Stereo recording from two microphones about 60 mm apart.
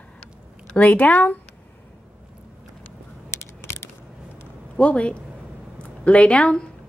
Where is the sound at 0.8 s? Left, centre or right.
Left.